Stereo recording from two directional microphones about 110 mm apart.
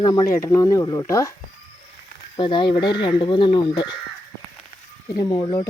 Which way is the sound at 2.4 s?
50° left (ahead or behind).